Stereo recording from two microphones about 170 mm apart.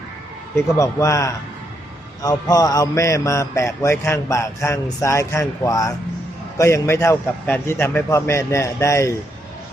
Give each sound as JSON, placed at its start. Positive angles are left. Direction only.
{"t": 0.5, "sound": "a man's voice", "side_deg": 20}